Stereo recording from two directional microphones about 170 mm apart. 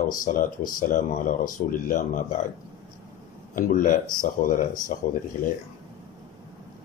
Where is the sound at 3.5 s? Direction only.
55° left (ahead or behind).